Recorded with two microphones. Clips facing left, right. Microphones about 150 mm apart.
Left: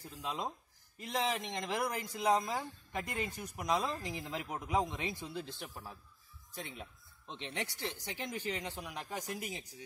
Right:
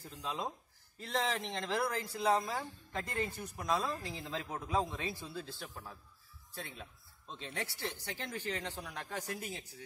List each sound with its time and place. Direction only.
0.0 s speech: 15° left (ahead or behind)